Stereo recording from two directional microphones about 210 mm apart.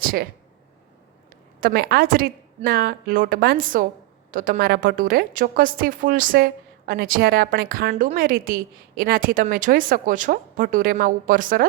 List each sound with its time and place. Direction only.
0.0 s a woman's voice: 45° right (ahead or behind)
1.6 s a woman's voice: 50° right (ahead or behind)